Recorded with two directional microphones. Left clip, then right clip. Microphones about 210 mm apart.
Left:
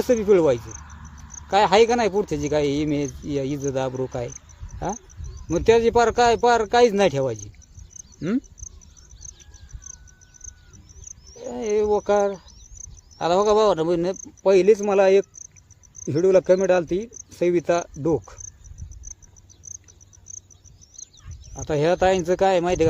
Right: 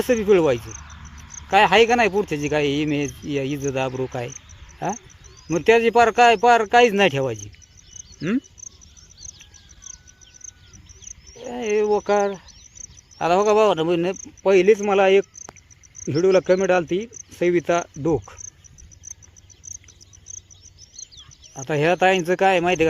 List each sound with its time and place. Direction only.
0.0 s speech: 20° right (ahead or behind)
0.6 s cricket: 40° left (ahead or behind)
1.5 s speech: 15° right (ahead or behind)
5.5 s speech: 20° right (ahead or behind)
8.6 s insect: 40° left (ahead or behind)
11.5 s speech: 20° right (ahead or behind)
21.5 s speech: 15° right (ahead or behind)